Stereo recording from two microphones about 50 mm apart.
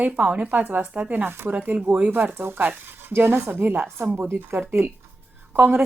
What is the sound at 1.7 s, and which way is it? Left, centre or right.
Speech, right.